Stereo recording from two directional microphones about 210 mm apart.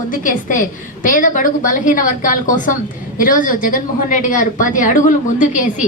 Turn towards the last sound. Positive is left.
turn(degrees=35)  # may be behind; listen again after turning